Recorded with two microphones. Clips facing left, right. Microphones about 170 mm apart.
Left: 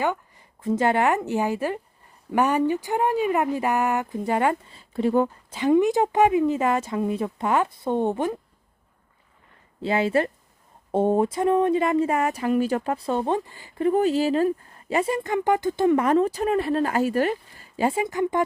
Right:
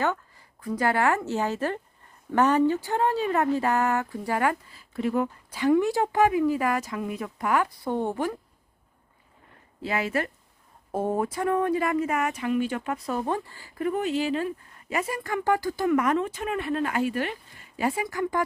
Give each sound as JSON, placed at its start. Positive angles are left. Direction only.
{"t": 0.0, "sound": "speech", "side_deg": 15}
{"t": 9.8, "sound": "speech", "side_deg": 30}
{"t": 17.7, "sound": "speech", "side_deg": 25}